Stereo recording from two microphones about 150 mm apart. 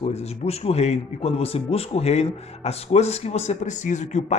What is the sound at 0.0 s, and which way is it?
Speech, 45° left (ahead or behind).